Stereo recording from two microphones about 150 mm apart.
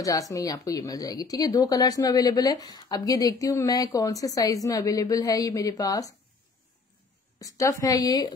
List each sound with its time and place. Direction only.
0.0 s speech: 20° left (ahead or behind)
7.3 s speech: 20° left (ahead or behind)